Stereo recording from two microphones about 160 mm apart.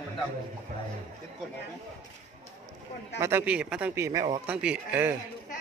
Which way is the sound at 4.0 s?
20° right (ahead or behind).